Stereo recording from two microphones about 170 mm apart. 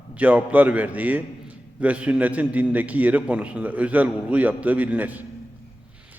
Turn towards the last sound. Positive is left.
turn(degrees=-10)  # may be behind; listen again after turning